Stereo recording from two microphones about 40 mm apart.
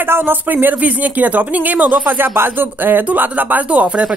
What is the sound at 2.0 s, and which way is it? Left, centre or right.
Speech, right.